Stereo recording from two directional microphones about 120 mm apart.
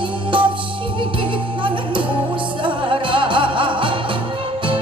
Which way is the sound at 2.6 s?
45° right (ahead or behind).